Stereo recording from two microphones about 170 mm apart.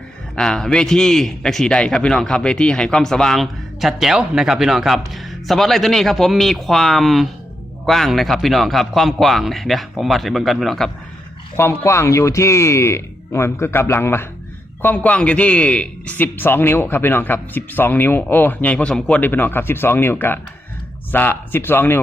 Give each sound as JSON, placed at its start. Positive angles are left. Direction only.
{"t": 0.3, "sound": "a man's voice", "side_deg": 5}
{"t": 11.5, "sound": "a man's voice", "side_deg": 15}